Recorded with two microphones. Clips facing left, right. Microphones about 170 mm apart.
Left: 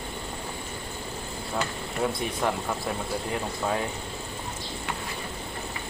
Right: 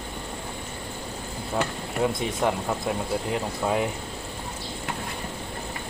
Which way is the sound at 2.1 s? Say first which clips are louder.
Right 2 dB; 15° right (ahead or behind).